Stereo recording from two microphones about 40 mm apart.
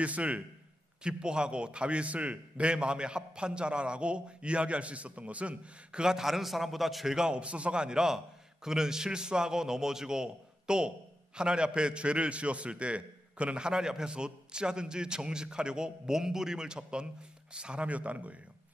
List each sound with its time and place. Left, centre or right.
0.0 s speech: right
1.0 s a man's voice: right
6.1 s a man's voice: centre
7.2 s a man's voice: right
17.8 s speech: right